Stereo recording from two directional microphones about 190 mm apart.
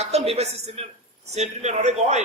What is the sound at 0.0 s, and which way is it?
A woman's voice, 35° right (ahead or behind).